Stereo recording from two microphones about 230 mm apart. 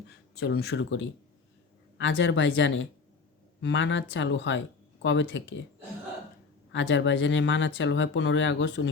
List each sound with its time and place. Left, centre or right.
0.3 s speech: left
6.7 s speech: left